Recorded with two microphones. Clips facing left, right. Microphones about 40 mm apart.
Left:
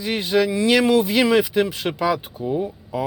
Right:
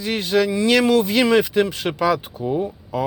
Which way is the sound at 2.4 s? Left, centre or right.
Centre.